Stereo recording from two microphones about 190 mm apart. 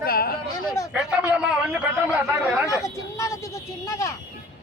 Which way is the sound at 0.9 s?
5° right (ahead or behind).